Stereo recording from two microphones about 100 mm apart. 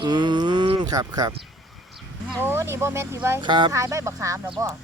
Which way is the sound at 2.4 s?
25° right (ahead or behind).